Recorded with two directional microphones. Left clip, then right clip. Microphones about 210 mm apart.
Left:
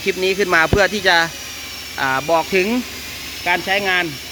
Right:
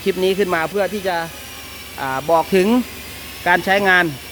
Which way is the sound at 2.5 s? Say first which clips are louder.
Right 2 dB; 20° right (ahead or behind).